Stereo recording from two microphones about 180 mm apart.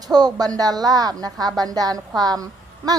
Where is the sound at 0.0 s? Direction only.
20° right (ahead or behind).